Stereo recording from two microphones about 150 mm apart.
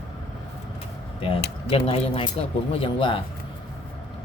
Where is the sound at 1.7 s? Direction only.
40° left (ahead or behind).